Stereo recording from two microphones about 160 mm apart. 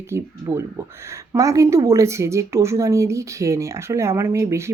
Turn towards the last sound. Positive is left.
turn(degrees=-15)  # may be behind; listen again after turning